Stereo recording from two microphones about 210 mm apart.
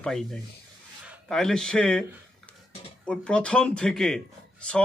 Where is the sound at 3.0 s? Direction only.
5° left (ahead or behind).